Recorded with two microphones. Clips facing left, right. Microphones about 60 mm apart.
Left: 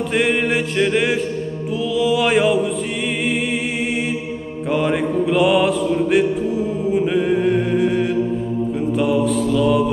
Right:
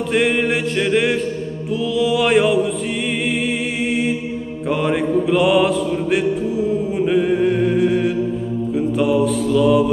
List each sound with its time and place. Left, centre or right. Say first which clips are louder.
0.1 s music: right 1 dB; centre
4.6 s mantra: even; centre